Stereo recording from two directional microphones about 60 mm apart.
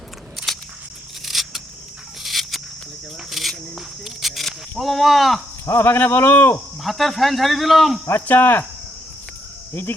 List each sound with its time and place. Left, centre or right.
0.3 s a sound: centre
3.2 s cricket: centre
3.8 s a sound: centre
4.8 s speech: centre
5.6 s speech: left
6.8 s speech: centre
8.0 s speech: left